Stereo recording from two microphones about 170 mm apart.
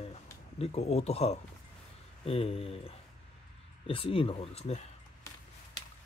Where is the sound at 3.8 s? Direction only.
35° left (ahead or behind).